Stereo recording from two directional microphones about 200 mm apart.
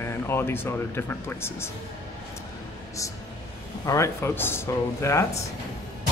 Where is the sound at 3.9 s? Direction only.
15° left (ahead or behind).